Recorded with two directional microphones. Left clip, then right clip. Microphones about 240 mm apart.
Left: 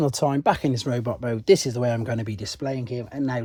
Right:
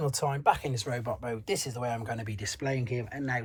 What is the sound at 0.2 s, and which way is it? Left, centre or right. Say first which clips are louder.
Speech: left 3 dB; left.